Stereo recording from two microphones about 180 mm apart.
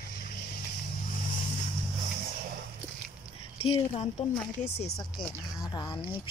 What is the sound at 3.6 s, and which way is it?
Speech, 35° left (ahead or behind).